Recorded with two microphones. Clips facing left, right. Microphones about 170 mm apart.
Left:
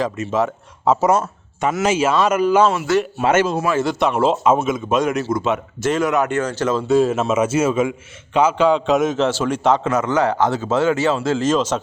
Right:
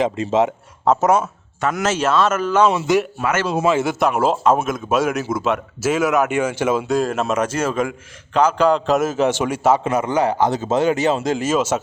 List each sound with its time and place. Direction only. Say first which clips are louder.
0.0 s speech: right 2 dB; 25° right (ahead or behind)
0.9 s speech: even; 5° right (ahead or behind)
1.6 s speech: left 2 dB; 10° left (ahead or behind)
2.6 s speech: right 1 dB; 20° right (ahead or behind)
3.2 s speech: left 5 dB; 25° left (ahead or behind)
3.8 s speech: even; 5° right (ahead or behind)
6.8 s speech: left 3 dB; centre (ahead or behind)
9.2 s a man's voice: right 1 dB; 15° right (ahead or behind)